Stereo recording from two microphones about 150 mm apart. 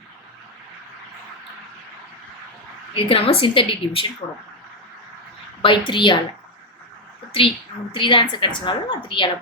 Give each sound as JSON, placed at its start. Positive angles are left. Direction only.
{"t": 2.9, "sound": "a woman's voice", "side_deg": 40}
{"t": 5.6, "sound": "a woman's voice", "side_deg": 35}
{"t": 7.9, "sound": "a woman's voice", "side_deg": 35}